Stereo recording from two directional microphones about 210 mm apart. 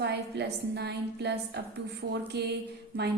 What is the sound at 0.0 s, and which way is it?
A woman's voice, 50° right (ahead or behind).